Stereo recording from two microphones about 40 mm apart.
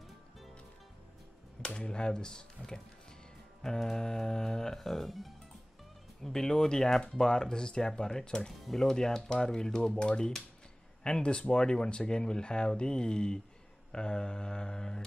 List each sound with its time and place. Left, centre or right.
1.6 s speech: left; by 5.3 s centre
6.2 s speech: centre